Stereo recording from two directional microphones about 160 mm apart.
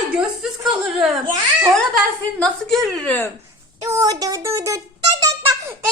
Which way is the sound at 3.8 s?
20° right (ahead or behind).